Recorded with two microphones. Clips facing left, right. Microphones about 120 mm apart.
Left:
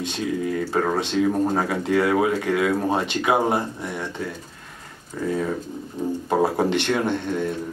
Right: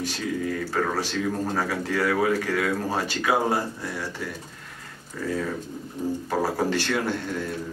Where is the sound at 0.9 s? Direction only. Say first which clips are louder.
Left 6 dB; 25° left (ahead or behind).